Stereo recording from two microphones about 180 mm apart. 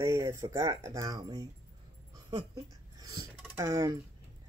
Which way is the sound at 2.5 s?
20° right (ahead or behind).